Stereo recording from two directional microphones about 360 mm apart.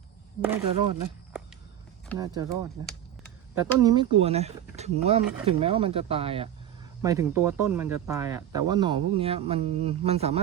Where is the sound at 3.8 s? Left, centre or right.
Centre.